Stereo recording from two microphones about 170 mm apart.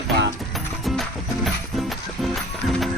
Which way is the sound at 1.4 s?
Centre (ahead or behind).